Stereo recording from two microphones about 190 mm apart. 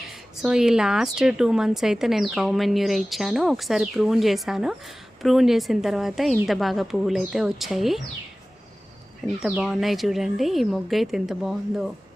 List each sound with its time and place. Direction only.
0.1 s a woman's voice: 5° right (ahead or behind)
9.4 s a woman's voice: 5° right (ahead or behind)